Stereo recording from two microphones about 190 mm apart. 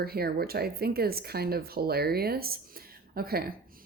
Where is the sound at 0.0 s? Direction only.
55° right (ahead or behind).